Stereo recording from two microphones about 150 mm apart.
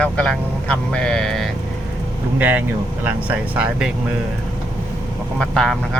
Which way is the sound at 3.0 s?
10° right (ahead or behind).